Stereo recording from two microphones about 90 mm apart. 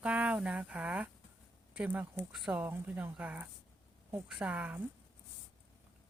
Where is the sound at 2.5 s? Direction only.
20° right (ahead or behind).